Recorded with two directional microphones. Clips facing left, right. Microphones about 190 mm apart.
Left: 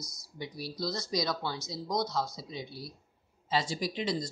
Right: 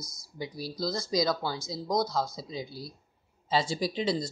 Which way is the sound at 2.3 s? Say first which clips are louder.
Right 3 dB; 90° right.